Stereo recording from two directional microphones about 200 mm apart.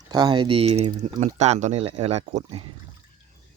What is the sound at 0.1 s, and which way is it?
Speech, 20° right (ahead or behind).